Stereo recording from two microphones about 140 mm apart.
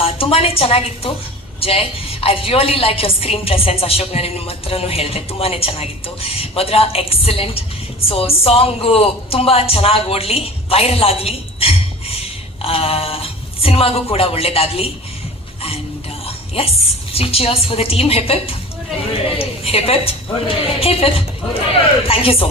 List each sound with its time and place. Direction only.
0.0 s a woman's voice: 45° left (ahead or behind)
16.2 s a woman's voice: 45° left (ahead or behind)